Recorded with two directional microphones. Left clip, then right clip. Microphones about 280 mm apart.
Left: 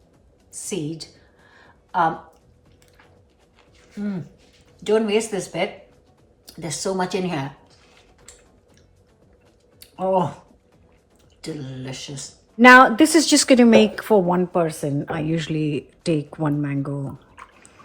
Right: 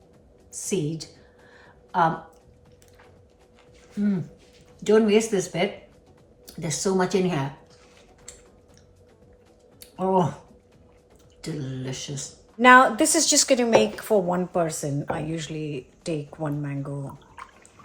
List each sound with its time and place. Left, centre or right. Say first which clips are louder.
0.5 s a woman's voice: right 1 dB; centre
4.8 s speech: even; centre
9.8 s speech: left 2 dB; centre
11.4 s speech: left 1 dB; centre
12.5 s a woman's voice: left 4 dB; left
17.3 s a sound: right 1 dB; centre